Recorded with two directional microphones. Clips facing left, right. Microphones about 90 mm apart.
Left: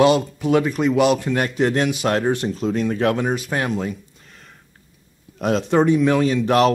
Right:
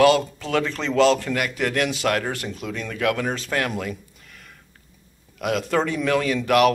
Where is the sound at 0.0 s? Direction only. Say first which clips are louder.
Left 1 dB; 20° left (ahead or behind).